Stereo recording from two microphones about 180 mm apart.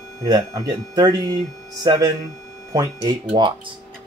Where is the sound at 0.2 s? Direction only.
20° right (ahead or behind).